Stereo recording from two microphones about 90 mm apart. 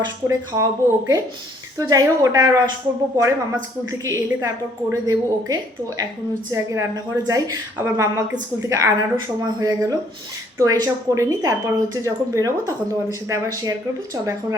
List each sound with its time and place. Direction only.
0.3 s speech: 35° right (ahead or behind)
3.9 s speech: 35° right (ahead or behind)
7.8 s a woman's voice: 30° right (ahead or behind)